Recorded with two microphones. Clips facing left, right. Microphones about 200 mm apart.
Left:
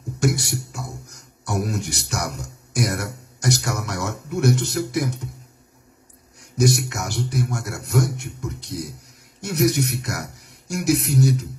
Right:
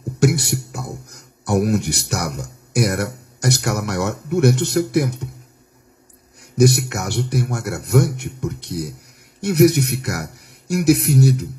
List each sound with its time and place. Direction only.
0.2 s a man's voice: 65° right (ahead or behind)
6.6 s a man's voice: 65° right (ahead or behind)